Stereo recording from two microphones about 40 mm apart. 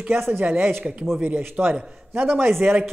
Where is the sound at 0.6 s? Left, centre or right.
Right.